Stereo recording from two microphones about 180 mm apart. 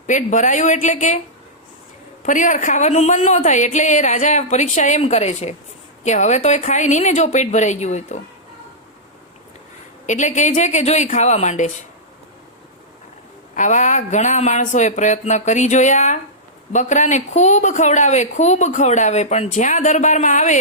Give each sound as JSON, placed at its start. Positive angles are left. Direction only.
{"t": 0.1, "sound": "speech", "side_deg": 45}
{"t": 2.2, "sound": "speech", "side_deg": 45}
{"t": 10.1, "sound": "speech", "side_deg": 40}
{"t": 13.6, "sound": "speech", "side_deg": 45}